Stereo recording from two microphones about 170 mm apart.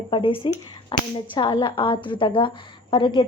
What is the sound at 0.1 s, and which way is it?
Speech, 30° left (ahead or behind).